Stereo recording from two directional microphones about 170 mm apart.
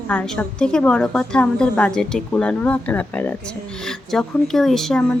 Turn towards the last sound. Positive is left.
turn(degrees=5)  # may be behind; listen again after turning